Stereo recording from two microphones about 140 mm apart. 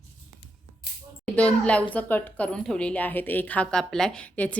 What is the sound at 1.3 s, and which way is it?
A woman's voice, 10° left (ahead or behind).